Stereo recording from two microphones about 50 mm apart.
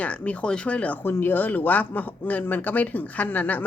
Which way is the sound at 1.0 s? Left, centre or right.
Left.